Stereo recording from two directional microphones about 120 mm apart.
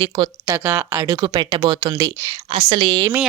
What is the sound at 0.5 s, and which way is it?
Speech, 20° right (ahead or behind).